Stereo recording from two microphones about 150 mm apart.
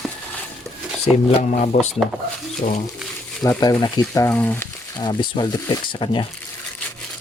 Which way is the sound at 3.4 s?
25° left (ahead or behind).